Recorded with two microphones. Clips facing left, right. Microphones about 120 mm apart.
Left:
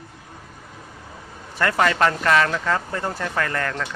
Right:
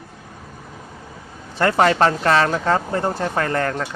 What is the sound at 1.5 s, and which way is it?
Speech, 30° right (ahead or behind).